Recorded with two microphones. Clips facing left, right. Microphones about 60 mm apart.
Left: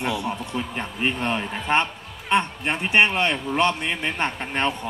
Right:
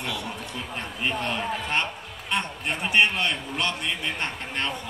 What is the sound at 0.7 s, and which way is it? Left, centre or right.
Speech, left.